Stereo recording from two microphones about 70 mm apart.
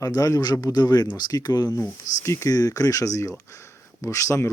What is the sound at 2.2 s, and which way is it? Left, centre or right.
Speech, left.